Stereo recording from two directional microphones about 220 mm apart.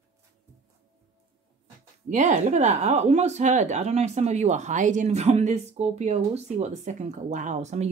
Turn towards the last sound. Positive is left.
turn(degrees=-30)  # may be behind; listen again after turning